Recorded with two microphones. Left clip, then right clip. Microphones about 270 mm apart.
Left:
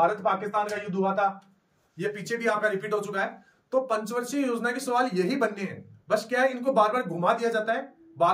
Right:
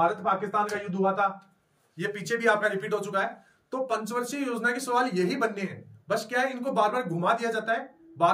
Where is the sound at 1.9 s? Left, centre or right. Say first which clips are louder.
Right 1 dB; centre.